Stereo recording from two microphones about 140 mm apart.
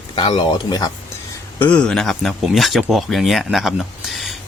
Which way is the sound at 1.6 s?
10° left (ahead or behind).